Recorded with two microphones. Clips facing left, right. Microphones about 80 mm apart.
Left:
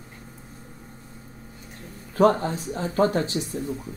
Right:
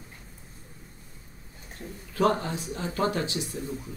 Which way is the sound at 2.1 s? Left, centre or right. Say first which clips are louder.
Left 5 dB; left.